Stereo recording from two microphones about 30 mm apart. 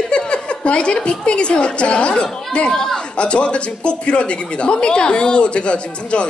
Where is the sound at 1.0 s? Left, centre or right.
Left.